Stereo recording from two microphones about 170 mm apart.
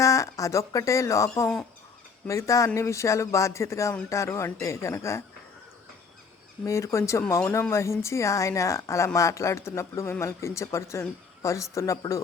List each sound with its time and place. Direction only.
0.0 s a man's voice: 20° left (ahead or behind)
6.7 s a man's voice: 15° left (ahead or behind)